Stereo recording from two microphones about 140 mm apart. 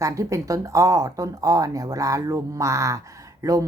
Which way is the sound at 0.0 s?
20° right (ahead or behind).